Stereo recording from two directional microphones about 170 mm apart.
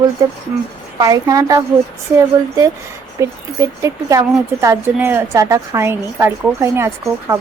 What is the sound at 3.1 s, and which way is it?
A woman's voice, 20° right (ahead or behind).